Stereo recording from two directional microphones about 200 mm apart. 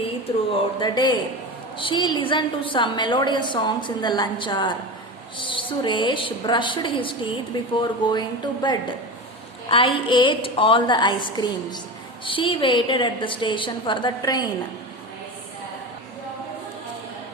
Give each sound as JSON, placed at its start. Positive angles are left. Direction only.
{"t": 0.8, "sound": "a woman's voice", "side_deg": 20}